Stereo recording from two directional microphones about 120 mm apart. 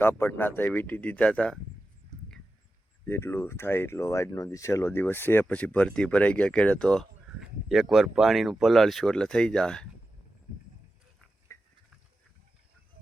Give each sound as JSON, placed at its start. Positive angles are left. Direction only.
{"t": 0.0, "sound": "speech", "side_deg": 20}
{"t": 3.1, "sound": "speech", "side_deg": 20}
{"t": 11.5, "sound": "a sound", "side_deg": 25}